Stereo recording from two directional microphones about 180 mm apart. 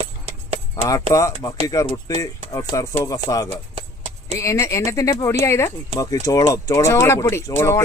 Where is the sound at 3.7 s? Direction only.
35° right (ahead or behind).